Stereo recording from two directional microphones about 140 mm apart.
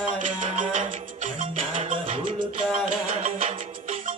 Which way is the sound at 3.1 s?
70° right (ahead or behind).